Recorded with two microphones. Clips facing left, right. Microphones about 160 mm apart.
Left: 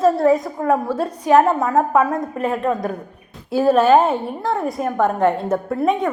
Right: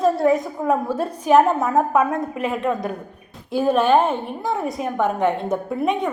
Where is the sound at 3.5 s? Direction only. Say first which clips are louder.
Left 3 dB; 5° left (ahead or behind).